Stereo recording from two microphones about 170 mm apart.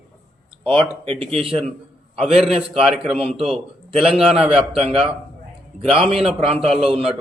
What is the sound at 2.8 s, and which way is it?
Speech, centre (ahead or behind).